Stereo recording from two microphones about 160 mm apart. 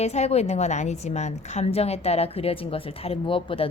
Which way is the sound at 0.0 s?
40° left (ahead or behind).